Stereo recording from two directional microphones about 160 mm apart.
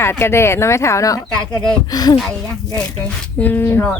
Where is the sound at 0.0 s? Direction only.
15° left (ahead or behind).